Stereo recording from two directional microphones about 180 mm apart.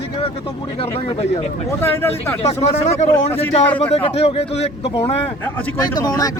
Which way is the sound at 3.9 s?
35° left (ahead or behind).